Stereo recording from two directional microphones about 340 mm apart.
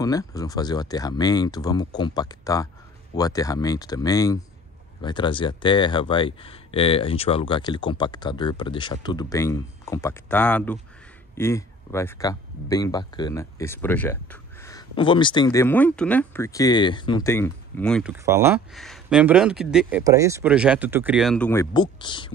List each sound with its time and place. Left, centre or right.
0.0 s speech: centre